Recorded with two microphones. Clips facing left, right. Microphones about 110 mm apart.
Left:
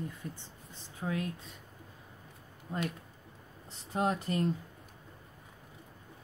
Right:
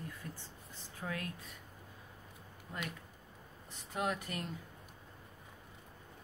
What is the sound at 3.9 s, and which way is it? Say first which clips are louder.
Speech: left 6 dB; 30° left (ahead or behind).